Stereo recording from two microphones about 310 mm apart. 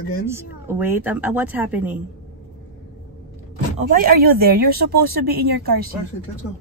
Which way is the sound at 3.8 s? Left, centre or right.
Right.